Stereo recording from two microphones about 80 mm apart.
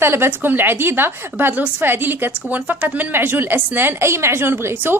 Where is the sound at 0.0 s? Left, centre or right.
Right.